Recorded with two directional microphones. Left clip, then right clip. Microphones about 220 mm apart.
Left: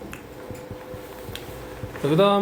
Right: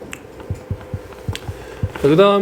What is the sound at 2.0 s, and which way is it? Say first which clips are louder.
Speech: right 7 dB; 35° right (ahead or behind).